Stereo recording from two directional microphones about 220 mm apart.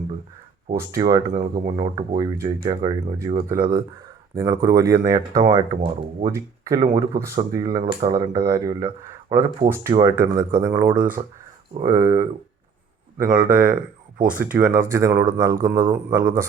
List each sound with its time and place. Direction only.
0.7 s speech: 15° right (ahead or behind)
1.3 s speech: 35° right (ahead or behind)
1.8 s a man's voice: 20° right (ahead or behind)
13.4 s speech: 40° right (ahead or behind)
14.3 s speech: 5° right (ahead or behind)